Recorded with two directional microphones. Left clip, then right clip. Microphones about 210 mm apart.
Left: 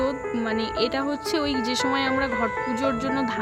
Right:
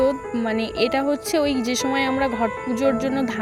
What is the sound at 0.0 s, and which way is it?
Speech, 15° right (ahead or behind).